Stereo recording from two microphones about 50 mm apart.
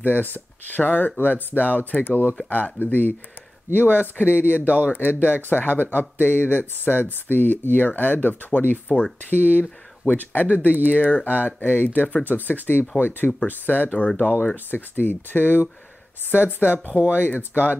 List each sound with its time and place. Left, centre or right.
0.0 s speech: left
4.6 s speech: right
4.9 s speech: left
13.8 s speech: left
14.4 s speech: left